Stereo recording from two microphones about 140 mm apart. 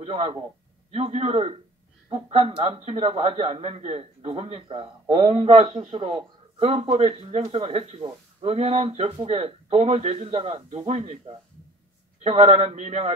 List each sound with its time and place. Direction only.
0.0 s a man's voice: 40° right (ahead or behind)
12.2 s a man's voice: 45° right (ahead or behind)